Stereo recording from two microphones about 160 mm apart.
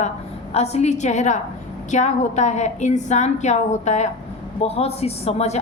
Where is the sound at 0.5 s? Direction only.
40° left (ahead or behind).